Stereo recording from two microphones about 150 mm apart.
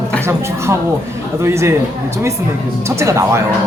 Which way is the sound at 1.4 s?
20° right (ahead or behind).